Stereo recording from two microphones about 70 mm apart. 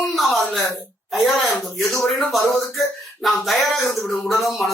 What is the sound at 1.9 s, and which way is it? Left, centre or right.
Speech, centre.